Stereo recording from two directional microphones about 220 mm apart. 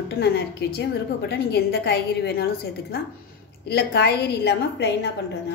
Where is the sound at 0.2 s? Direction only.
50° left (ahead or behind).